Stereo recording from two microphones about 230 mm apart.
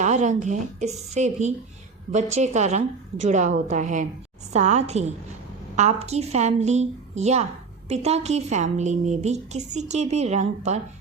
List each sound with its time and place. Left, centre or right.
0.0 s a woman's voice: right